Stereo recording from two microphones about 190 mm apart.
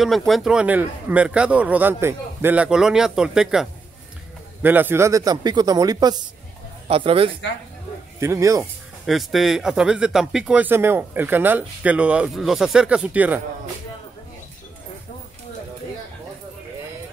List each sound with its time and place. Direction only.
0.0 s speech: centre (ahead or behind); by 7.3 s 30° right (ahead or behind)
8.2 s speech: 15° right (ahead or behind)
9.0 s speech: centre (ahead or behind)